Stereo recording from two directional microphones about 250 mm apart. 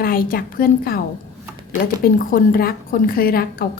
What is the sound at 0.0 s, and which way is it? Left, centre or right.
A woman's voice, left.